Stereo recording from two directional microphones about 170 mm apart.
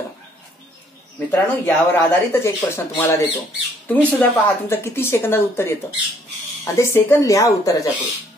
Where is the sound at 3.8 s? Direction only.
10° left (ahead or behind).